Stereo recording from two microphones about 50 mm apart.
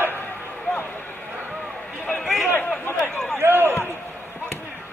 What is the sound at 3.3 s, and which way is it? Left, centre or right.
Basketball bounce, right.